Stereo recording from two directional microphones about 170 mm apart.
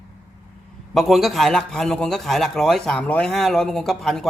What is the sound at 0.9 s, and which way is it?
A man's voice, centre (ahead or behind).